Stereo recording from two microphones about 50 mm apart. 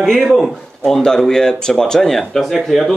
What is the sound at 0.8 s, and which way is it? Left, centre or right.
Speech, centre.